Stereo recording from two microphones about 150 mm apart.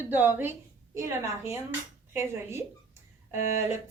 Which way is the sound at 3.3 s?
50° left (ahead or behind).